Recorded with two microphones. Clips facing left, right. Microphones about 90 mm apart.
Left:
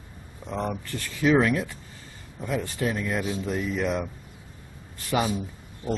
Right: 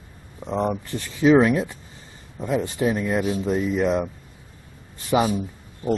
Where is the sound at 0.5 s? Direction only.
20° right (ahead or behind).